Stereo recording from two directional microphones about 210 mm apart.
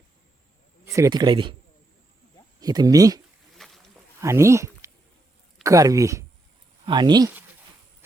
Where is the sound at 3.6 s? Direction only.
Centre (ahead or behind).